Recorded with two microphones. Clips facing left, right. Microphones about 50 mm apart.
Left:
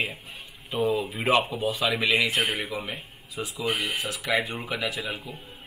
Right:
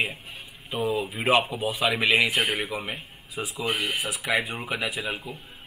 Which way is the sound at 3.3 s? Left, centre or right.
Right.